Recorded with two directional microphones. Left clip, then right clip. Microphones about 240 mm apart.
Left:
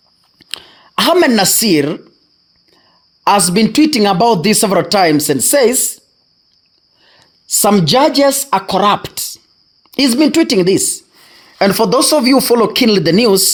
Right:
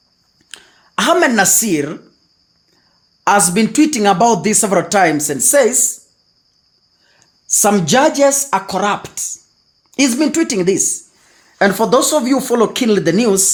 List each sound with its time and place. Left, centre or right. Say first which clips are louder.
0.3 s a sound: left 10 dB; left
3.2 s speech: left 2 dB; left
7.0 s a woman's voice: left 3 dB; left